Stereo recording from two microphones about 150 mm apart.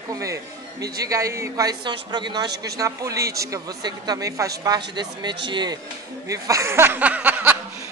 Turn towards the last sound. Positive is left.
turn(degrees=-10)  # may be behind; listen again after turning